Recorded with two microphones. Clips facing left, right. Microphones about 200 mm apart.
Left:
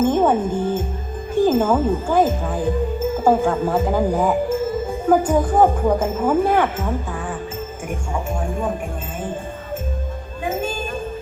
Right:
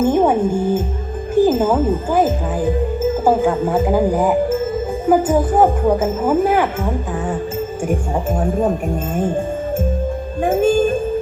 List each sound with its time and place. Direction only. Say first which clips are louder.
0.0 s speech: right 2 dB; 10° right (ahead or behind)
7.9 s speech: right 5 dB; 35° right (ahead or behind)
10.4 s music: right 10 dB; 50° right (ahead or behind)